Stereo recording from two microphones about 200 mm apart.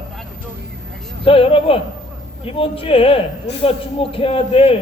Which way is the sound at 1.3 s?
25° left (ahead or behind).